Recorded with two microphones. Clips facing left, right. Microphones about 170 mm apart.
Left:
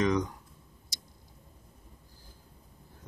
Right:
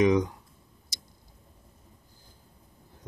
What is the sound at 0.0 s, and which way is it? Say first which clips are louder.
Speech: right 5 dB; 10° right (ahead or behind).